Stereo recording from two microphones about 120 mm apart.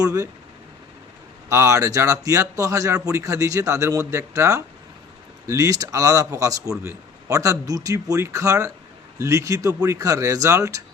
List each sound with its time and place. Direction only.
0.0 s speech: 25° right (ahead or behind)
1.5 s speech: 25° right (ahead or behind)